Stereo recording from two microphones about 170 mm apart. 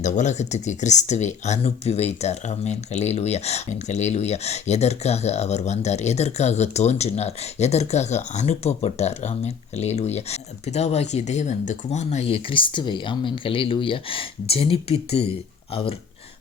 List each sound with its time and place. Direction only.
0.0 s speech: 45° left (ahead or behind)